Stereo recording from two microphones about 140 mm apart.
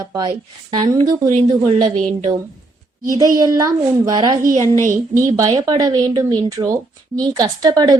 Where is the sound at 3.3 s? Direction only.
25° right (ahead or behind).